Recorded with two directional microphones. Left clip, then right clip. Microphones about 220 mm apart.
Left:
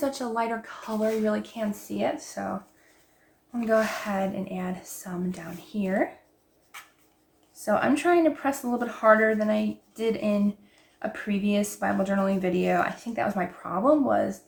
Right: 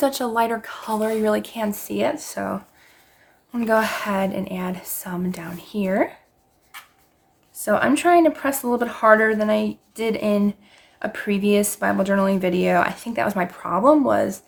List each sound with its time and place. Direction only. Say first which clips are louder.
0.0 s speech: right 7 dB; 40° right (ahead or behind)
3.5 s speech: right 4 dB; 45° right (ahead or behind)
7.5 s speech: right 5 dB; 40° right (ahead or behind)